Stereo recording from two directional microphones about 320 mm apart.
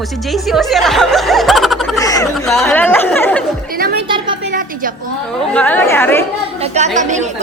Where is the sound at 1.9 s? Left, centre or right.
Centre.